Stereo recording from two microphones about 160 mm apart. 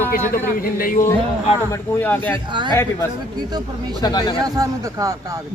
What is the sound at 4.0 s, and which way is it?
Speech, 25° left (ahead or behind).